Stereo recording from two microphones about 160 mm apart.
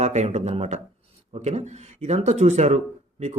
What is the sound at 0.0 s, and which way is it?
Speech, 45° right (ahead or behind).